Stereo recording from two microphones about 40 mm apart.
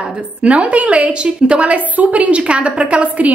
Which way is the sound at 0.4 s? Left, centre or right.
Right.